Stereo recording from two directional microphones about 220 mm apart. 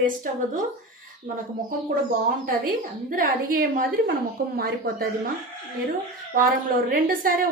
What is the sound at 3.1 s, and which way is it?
A woman's voice, 40° right (ahead or behind).